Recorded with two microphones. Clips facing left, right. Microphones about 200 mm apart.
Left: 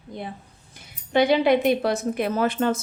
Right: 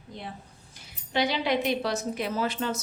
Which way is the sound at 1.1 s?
55° left (ahead or behind).